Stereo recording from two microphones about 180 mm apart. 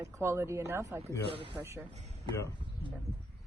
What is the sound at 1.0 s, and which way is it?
Speech, 30° right (ahead or behind).